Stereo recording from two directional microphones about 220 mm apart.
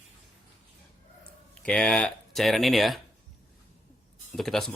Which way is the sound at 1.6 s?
5° left (ahead or behind).